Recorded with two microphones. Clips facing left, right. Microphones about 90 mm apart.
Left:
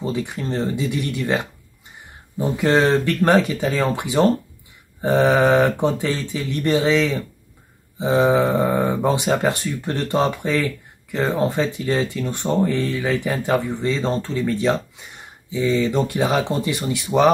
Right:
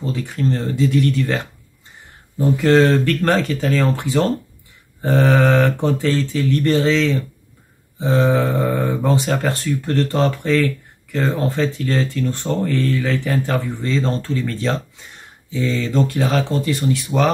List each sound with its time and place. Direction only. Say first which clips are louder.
0.0 s speech: right 3 dB; 15° left (ahead or behind)
5.0 s mantra: even; 20° left (ahead or behind)
6.3 s speech: right 1 dB; 15° left (ahead or behind)